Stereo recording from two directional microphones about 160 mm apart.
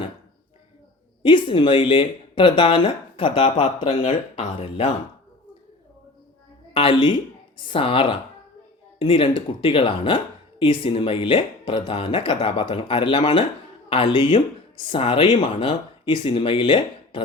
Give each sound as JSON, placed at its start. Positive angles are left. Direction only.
{"t": 1.2, "sound": "speech", "side_deg": 30}
{"t": 6.7, "sound": "speech", "side_deg": 35}